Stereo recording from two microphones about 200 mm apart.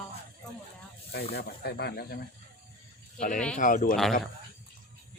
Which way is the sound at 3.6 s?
40° left (ahead or behind).